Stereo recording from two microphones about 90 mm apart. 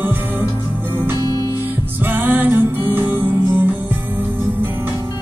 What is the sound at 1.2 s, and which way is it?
Music, 45° left (ahead or behind).